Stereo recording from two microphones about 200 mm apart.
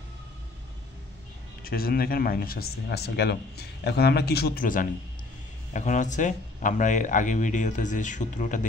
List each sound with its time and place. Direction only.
1.6 s speech: 50° left (ahead or behind)